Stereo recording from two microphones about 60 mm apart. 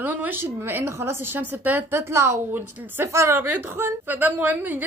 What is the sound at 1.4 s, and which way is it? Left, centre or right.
Speech, right.